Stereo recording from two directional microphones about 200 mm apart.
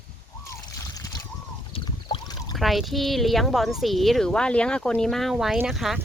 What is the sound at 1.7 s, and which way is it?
Boat, 25° left (ahead or behind).